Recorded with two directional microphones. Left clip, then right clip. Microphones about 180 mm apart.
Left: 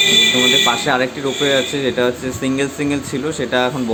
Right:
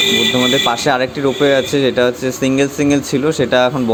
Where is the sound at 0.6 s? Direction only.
30° right (ahead or behind).